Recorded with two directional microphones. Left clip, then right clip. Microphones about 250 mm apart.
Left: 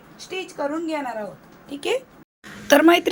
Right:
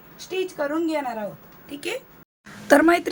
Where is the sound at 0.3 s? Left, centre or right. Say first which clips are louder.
Right 1 dB; centre.